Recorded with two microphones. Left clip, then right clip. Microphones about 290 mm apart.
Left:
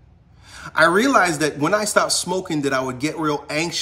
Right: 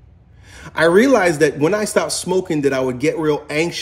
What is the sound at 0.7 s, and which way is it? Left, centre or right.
A man's voice, left.